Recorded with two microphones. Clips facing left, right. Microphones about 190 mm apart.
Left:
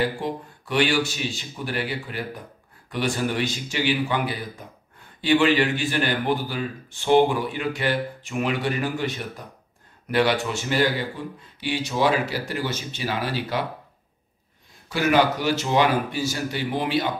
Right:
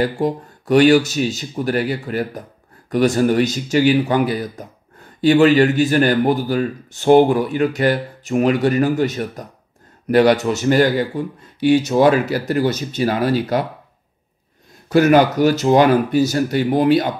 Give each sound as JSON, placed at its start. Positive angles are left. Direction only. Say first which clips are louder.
{"t": 0.0, "sound": "a man's voice", "louder": "right 6 dB", "side_deg": -45}
{"t": 14.9, "sound": "a man's voice", "louder": "right 8 dB", "side_deg": -45}